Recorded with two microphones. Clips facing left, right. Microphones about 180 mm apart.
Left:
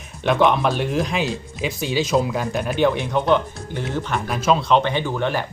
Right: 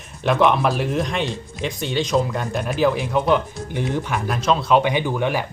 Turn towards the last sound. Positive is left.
turn(degrees=-10)  # may be behind; listen again after turning